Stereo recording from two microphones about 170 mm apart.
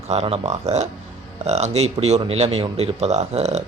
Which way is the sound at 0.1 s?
40° right (ahead or behind).